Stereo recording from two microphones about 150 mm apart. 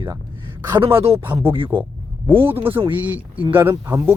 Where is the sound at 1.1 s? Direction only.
15° right (ahead or behind).